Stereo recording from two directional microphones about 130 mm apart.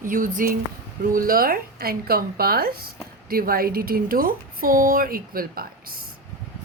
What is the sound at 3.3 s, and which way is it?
Speech, 90° right.